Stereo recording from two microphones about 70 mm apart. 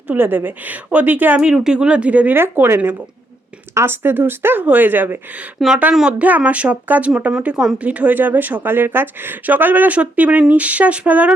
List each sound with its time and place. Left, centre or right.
0.1 s speech: right
1.4 s speech: centre
2.3 s speech: right
5.5 s speech: centre
6.1 s speech: right
7.4 s speech: centre